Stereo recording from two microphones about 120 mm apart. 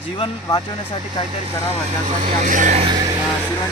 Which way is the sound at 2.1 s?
90° right.